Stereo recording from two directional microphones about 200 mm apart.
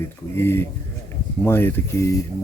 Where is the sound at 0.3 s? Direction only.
10° left (ahead or behind).